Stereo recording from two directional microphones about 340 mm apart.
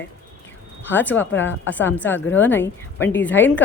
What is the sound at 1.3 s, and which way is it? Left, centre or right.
Speech, left.